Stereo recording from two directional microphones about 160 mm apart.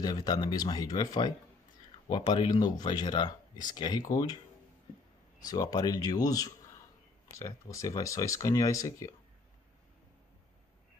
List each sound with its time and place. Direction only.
0.0 s speech: 25° left (ahead or behind)
5.4 s speech: 20° left (ahead or behind)